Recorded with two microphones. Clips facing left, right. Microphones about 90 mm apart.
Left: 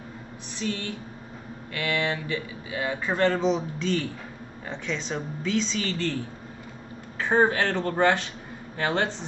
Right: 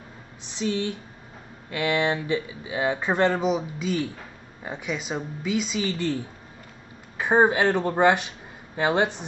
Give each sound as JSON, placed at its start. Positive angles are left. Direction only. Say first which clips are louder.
{"t": 0.5, "sound": "speech", "louder": "right 4 dB", "side_deg": -20}
{"t": 7.2, "sound": "speech", "louder": "right 2 dB", "side_deg": -15}